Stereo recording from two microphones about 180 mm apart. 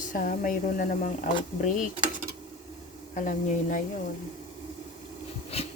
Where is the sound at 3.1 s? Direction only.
45° left (ahead or behind).